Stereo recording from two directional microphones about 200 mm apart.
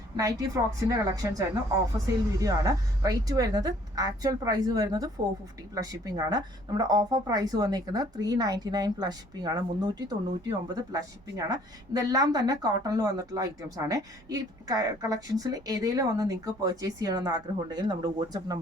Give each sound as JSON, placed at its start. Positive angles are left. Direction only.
{"t": 0.2, "sound": "a woman's voice", "side_deg": -15}